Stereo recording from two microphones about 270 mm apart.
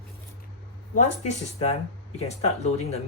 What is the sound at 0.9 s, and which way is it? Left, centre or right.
Speech, left.